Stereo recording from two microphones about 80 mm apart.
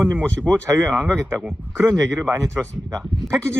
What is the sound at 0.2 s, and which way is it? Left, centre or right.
Speech, centre.